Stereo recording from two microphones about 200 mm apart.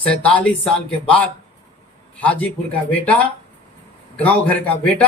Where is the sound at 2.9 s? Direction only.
5° left (ahead or behind).